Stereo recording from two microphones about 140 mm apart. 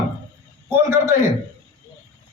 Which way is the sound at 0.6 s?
20° right (ahead or behind).